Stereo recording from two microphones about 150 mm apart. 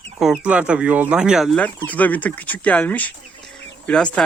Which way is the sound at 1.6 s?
10° left (ahead or behind).